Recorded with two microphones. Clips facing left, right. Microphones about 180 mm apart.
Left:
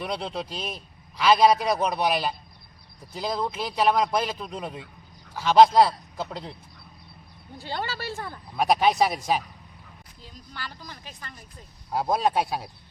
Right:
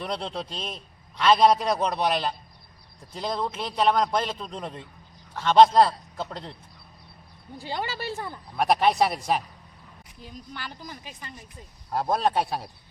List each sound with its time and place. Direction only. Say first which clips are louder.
0.0 s a man's voice: left 1 dB; 5° left (ahead or behind)
7.6 s speech: right 1 dB; 15° right (ahead or behind)
8.5 s a man's voice: even; centre (ahead or behind)
10.8 s speech: right 2 dB; 15° right (ahead or behind)
11.9 s a man's voice: even; 5° left (ahead or behind)